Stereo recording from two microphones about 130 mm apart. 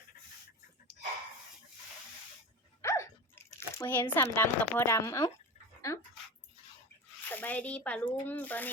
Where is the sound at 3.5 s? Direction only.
20° left (ahead or behind).